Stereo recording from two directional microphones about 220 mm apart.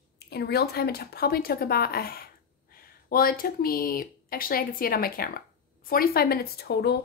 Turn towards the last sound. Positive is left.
turn(degrees=45)  # may be behind; listen again after turning